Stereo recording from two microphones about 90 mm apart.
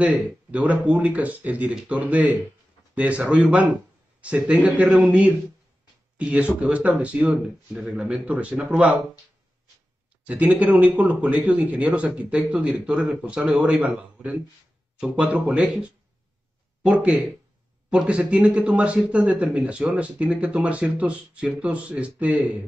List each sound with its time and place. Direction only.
0.0 s speech: 15° right (ahead or behind)
10.2 s speech: 15° right (ahead or behind)